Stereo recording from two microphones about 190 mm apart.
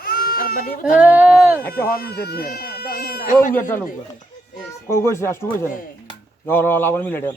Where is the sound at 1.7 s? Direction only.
50° left (ahead or behind).